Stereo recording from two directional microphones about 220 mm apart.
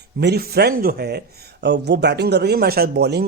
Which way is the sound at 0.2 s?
45° right (ahead or behind).